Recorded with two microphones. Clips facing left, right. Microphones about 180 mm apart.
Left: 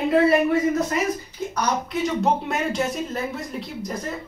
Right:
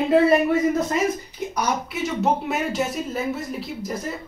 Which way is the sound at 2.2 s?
5° right (ahead or behind).